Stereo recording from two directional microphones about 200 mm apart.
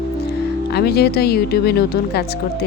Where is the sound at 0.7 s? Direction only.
55° left (ahead or behind).